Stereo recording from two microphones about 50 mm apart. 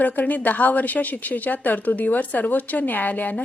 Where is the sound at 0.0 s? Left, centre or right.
Left.